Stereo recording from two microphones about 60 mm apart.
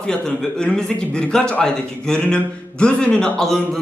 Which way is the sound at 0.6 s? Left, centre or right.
Centre.